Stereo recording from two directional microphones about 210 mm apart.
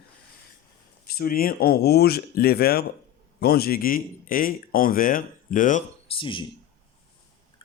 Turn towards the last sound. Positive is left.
turn(degrees=25)  # may be behind; listen again after turning